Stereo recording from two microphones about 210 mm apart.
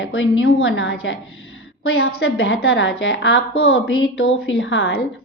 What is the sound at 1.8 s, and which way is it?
Speech, 85° left.